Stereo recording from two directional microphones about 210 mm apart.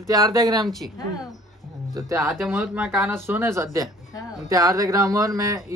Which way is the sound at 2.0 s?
15° right (ahead or behind).